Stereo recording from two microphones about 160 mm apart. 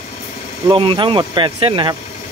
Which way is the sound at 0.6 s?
30° right (ahead or behind).